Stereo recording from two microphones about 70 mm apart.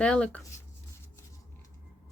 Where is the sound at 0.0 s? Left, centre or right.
Centre.